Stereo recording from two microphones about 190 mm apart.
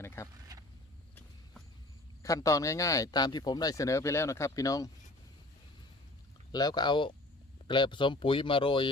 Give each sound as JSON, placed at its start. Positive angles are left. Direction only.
{"t": 0.0, "sound": "a sound", "side_deg": 15}
{"t": 2.2, "sound": "speech", "side_deg": 15}
{"t": 6.5, "sound": "speech", "side_deg": 20}